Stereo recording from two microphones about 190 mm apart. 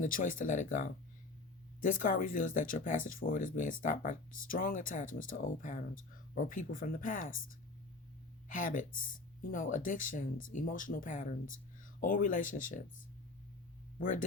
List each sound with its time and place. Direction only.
0.0 s speech: 45° left (ahead or behind)
8.4 s speech: 45° left (ahead or behind)
14.0 s speech: 45° left (ahead or behind)